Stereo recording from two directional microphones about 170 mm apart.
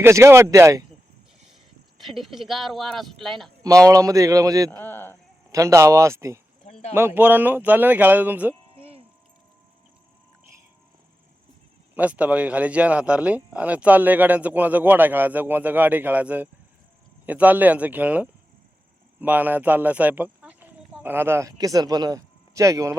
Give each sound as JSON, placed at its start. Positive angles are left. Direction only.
{"t": 0.0, "sound": "speech", "side_deg": -15}
{"t": 2.0, "sound": "speech", "side_deg": 0}
{"t": 3.6, "sound": "a man's voice", "side_deg": -20}
{"t": 4.7, "sound": "speech", "side_deg": 10}
{"t": 5.5, "sound": "speech", "side_deg": -20}
{"t": 11.9, "sound": "speech", "side_deg": -10}